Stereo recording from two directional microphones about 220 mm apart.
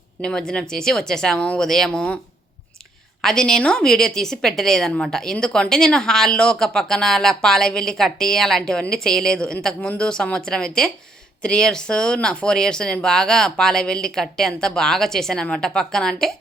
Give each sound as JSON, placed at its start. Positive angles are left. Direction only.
{"t": 0.2, "sound": "a woman's voice", "side_deg": 5}
{"t": 3.2, "sound": "a woman's voice", "side_deg": 0}